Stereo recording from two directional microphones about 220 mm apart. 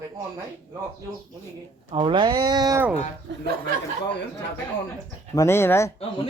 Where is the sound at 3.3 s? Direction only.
55° right (ahead or behind).